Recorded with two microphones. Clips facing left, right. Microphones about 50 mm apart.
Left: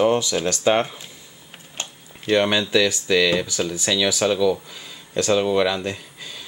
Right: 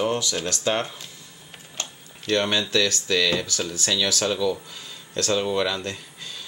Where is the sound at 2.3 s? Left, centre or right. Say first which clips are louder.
Left 4 dB; centre.